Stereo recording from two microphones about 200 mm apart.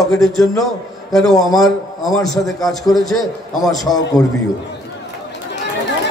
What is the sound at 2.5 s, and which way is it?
Speech, 20° left (ahead or behind).